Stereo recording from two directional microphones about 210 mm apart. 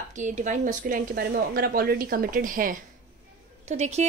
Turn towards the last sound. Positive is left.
turn(degrees=-30)  # may be behind; listen again after turning